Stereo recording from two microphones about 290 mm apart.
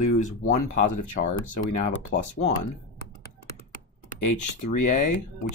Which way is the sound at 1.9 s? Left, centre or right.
Left.